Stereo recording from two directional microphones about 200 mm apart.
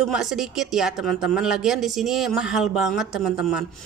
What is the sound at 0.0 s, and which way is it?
Speech, centre (ahead or behind).